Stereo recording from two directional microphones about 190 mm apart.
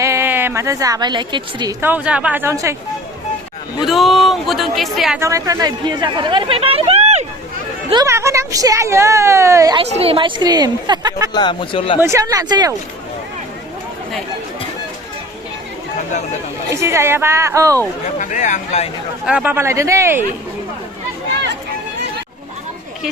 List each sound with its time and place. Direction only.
0.0 s a woman's voice: 15° right (ahead or behind)
1.8 s a woman's voice: 10° right (ahead or behind)
3.8 s a woman's voice: centre (ahead or behind)
5.2 s speech: 20° right (ahead or behind); by 7.3 s 35° right (ahead or behind)
8.0 s a woman's voice: 15° right (ahead or behind)
9.7 s speech: 30° right (ahead or behind)
11.3 s a man's voice: 25° left (ahead or behind)
11.9 s a woman's voice: 15° right (ahead or behind)
16.6 s a woman's voice: 15° right (ahead or behind)
18.2 s speech: 40° left (ahead or behind)
19.2 s a woman's voice: 5° right (ahead or behind)